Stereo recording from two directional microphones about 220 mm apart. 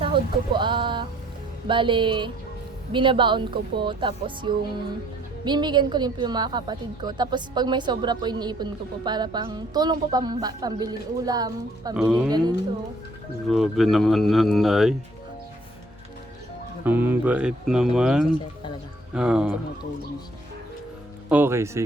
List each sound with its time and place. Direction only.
0.0 s a woman's voice: 20° right (ahead or behind)
11.9 s speech: 5° right (ahead or behind)
13.5 s speech: centre (ahead or behind)
16.8 s speech: 10° right (ahead or behind)
21.2 s speech: 10° right (ahead or behind)